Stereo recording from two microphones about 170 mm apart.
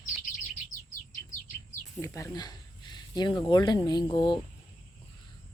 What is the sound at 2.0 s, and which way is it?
Speech, 20° left (ahead or behind).